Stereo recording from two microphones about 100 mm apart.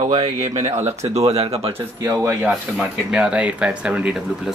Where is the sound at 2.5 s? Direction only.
10° right (ahead or behind).